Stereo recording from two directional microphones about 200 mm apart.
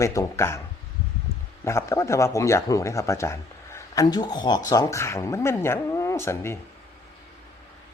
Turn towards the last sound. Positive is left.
turn(degrees=10)  # may be behind; listen again after turning